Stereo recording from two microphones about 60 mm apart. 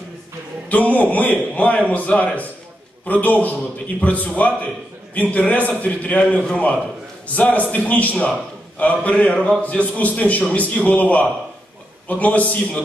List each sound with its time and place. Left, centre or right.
0.7 s a man's voice: left